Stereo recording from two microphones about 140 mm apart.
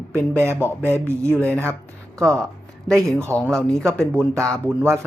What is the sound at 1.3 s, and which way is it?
Speech, 10° left (ahead or behind).